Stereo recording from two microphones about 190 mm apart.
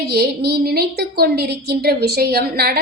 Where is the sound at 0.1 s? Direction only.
55° right (ahead or behind).